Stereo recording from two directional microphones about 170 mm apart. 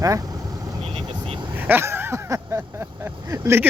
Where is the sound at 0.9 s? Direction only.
35° right (ahead or behind).